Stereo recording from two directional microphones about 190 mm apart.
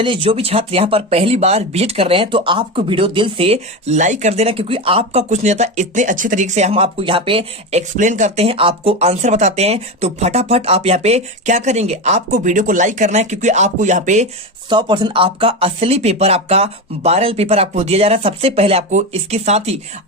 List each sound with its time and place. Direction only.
0.0 s speech: 25° right (ahead or behind)
14.7 s speech: 25° right (ahead or behind)